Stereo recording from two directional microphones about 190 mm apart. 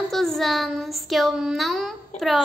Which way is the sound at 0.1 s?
Centre (ahead or behind).